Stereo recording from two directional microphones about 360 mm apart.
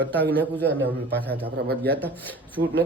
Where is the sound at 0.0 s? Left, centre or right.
Centre.